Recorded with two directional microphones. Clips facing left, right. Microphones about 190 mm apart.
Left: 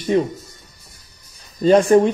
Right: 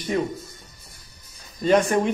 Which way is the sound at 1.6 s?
30° left (ahead or behind).